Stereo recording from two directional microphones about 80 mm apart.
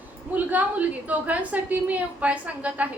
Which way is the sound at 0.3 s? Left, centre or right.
Centre.